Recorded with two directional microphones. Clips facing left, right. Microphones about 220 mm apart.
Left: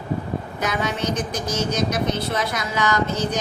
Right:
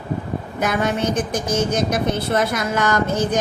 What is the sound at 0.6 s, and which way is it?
A woman's voice, 50° right (ahead or behind).